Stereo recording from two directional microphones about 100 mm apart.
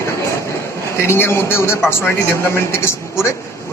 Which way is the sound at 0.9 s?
25° left (ahead or behind).